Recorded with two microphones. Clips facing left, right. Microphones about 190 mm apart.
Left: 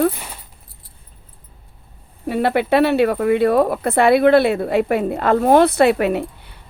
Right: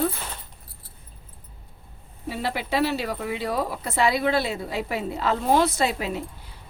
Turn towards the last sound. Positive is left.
turn(degrees=65)  # may be behind; listen again after turning